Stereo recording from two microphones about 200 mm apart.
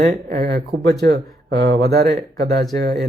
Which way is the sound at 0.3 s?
50° right (ahead or behind).